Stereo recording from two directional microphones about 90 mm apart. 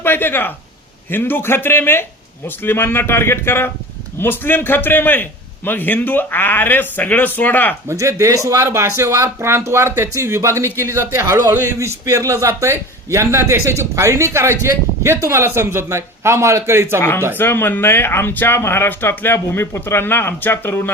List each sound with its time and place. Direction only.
0.0 s a man's voice: 25° left (ahead or behind)
7.9 s a man's voice: 35° right (ahead or behind)
17.0 s a man's voice: 30° left (ahead or behind)